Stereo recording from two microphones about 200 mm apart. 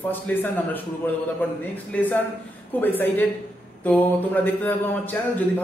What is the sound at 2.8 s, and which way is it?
A man's voice, 10° left (ahead or behind).